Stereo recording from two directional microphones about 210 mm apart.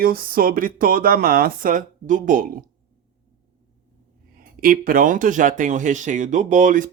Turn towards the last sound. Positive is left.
turn(degrees=-40)  # may be behind; listen again after turning